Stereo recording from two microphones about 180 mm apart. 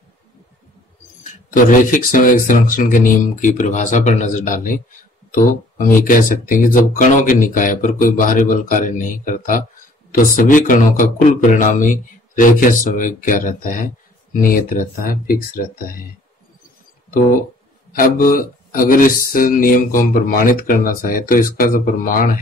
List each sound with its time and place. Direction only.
1.5 s speech: 50° left (ahead or behind)
17.9 s speech: 50° left (ahead or behind)